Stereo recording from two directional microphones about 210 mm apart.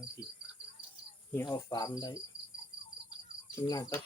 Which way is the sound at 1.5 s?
15° left (ahead or behind).